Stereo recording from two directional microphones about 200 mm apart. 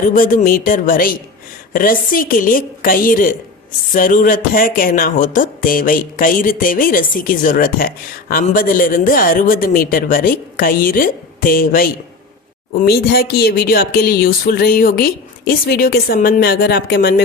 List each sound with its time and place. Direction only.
0.1 s speech: 40° left (ahead or behind)